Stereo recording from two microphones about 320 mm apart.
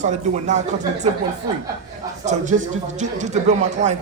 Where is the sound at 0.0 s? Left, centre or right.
Right.